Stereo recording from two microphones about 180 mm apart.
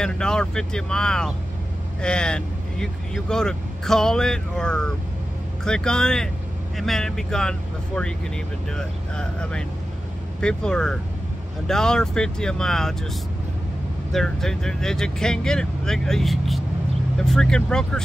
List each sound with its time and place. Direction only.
0.0 s speech: 5° left (ahead or behind)
14.1 s speech: centre (ahead or behind)